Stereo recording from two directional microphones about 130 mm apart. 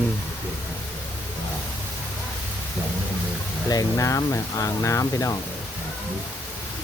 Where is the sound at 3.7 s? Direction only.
25° left (ahead or behind).